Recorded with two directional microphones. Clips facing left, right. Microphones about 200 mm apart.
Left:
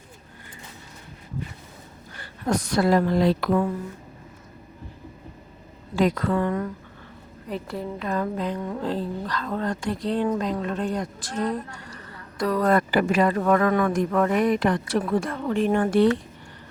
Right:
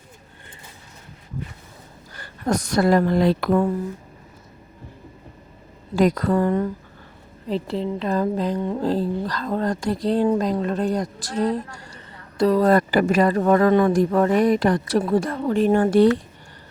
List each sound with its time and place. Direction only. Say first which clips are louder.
2.2 s a woman's voice: right 2 dB; 40° right (ahead or behind)
6.0 s a woman's voice: right 3 dB; 40° right (ahead or behind)